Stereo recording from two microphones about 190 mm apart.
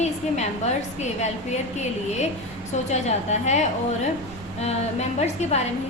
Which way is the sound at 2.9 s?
35° left (ahead or behind).